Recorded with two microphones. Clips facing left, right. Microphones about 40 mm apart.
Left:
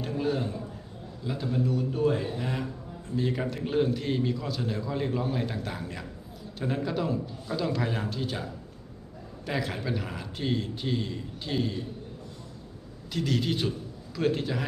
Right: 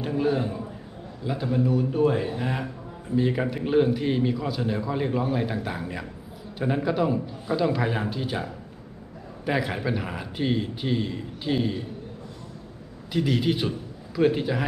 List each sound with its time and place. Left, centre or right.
0.0 s a man's voice: centre
9.5 s a man's voice: centre
13.1 s a man's voice: centre